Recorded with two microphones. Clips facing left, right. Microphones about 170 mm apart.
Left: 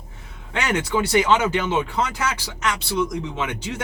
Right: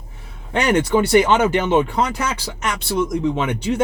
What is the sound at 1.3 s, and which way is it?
Speech, 55° right (ahead or behind).